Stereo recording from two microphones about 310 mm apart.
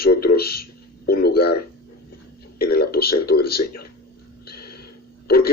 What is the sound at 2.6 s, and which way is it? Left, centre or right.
Speech, left.